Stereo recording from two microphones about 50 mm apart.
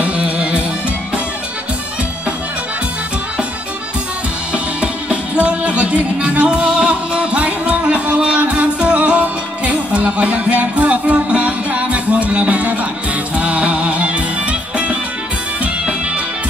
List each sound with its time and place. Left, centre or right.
0.0 s music: right
4.7 s music: right